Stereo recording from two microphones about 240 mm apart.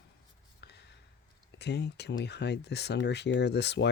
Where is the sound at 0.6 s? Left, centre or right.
Left.